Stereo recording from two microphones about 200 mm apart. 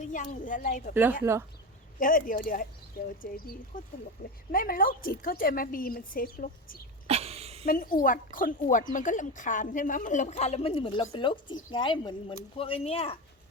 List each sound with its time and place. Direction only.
0.0 s a woman's voice: 40° left (ahead or behind)
1.2 s speech: 15° right (ahead or behind)
2.0 s a woman's voice: 45° left (ahead or behind)
7.1 s a sound: 30° right (ahead or behind)
7.7 s a woman's voice: 45° left (ahead or behind); by 13.1 s 30° left (ahead or behind)